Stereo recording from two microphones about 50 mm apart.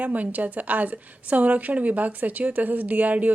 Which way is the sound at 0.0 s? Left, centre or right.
Right.